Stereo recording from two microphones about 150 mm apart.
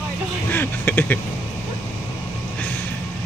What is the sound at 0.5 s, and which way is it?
Speech, 15° left (ahead or behind).